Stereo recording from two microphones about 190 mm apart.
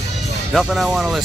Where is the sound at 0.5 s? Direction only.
Centre (ahead or behind).